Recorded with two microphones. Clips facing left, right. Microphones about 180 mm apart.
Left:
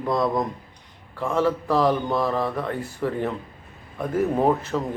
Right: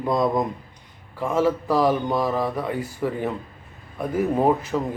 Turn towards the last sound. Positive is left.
turn(degrees=-5)  # may be behind; listen again after turning